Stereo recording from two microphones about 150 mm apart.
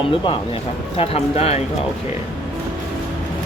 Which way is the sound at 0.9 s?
40° left (ahead or behind).